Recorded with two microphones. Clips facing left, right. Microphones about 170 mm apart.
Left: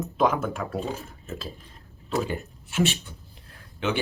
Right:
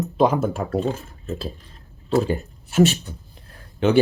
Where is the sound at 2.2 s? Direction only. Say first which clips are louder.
Right 6 dB; 40° right (ahead or behind).